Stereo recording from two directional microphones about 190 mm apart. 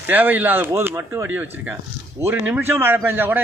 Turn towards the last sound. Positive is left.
turn(degrees=-10)  # may be behind; listen again after turning